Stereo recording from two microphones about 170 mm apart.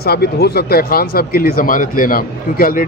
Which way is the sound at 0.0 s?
70° left (ahead or behind).